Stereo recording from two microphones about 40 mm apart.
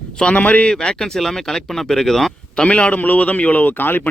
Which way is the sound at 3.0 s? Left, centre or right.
Left.